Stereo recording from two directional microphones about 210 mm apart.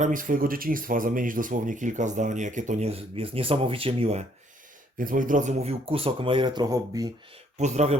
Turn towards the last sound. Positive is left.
turn(degrees=-30)  # may be behind; listen again after turning